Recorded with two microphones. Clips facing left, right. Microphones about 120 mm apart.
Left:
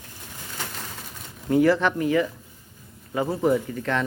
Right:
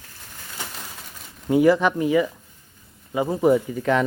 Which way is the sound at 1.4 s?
15° right (ahead or behind).